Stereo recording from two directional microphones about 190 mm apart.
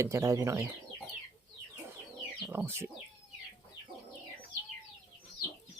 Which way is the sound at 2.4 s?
10° right (ahead or behind).